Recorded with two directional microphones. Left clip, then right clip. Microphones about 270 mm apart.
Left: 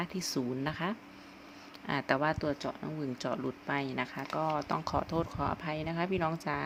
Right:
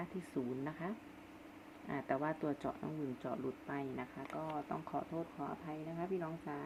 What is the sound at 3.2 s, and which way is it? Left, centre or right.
Speech, left.